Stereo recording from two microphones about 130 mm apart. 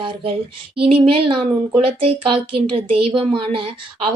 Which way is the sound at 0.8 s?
45° right (ahead or behind).